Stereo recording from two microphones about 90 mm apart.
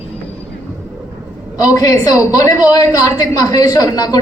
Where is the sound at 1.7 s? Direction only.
40° left (ahead or behind).